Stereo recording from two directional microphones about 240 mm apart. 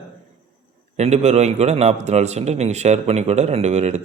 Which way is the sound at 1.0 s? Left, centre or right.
Right.